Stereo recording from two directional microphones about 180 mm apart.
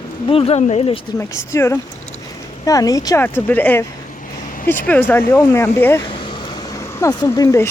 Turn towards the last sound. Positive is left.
turn(degrees=20)  # may be behind; listen again after turning